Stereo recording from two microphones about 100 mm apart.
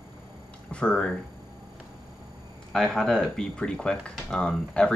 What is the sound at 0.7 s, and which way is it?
Speech, 10° left (ahead or behind).